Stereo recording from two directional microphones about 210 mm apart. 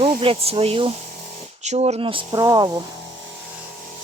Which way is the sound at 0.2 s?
25° right (ahead or behind).